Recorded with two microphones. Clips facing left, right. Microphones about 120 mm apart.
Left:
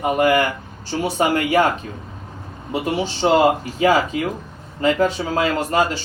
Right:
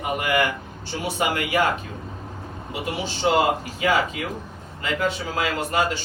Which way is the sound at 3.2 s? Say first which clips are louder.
Left 4 dB; 35° left (ahead or behind).